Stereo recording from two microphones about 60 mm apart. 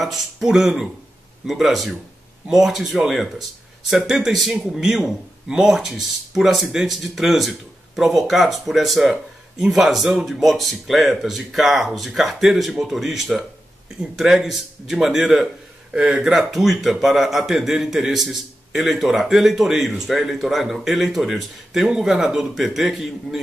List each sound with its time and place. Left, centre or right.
0.0 s a man's voice: centre